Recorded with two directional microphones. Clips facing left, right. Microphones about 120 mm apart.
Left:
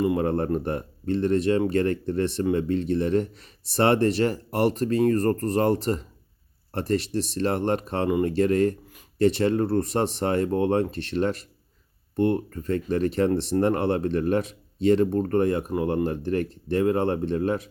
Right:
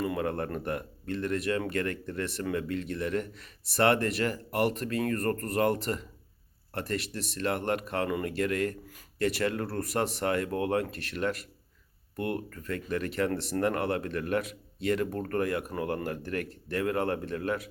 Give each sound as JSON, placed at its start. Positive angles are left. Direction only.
{"t": 0.0, "sound": "speech", "side_deg": 25}